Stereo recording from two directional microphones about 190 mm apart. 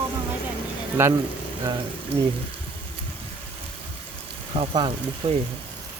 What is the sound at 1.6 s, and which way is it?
Speech, 20° right (ahead or behind).